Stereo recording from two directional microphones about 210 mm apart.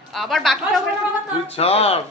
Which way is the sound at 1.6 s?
30° left (ahead or behind).